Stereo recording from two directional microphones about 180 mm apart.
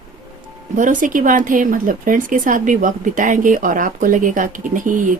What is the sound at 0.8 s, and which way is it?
Speech, 45° right (ahead or behind).